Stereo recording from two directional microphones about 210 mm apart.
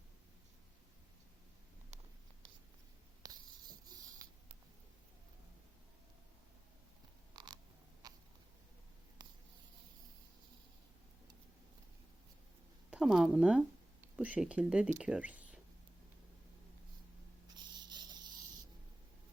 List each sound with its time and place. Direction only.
3.2 s writing: 20° right (ahead or behind)
7.3 s frog: 20° right (ahead or behind)
8.0 s cat: 20° right (ahead or behind)
12.9 s speech: centre (ahead or behind)
17.5 s a sound: 20° right (ahead or behind)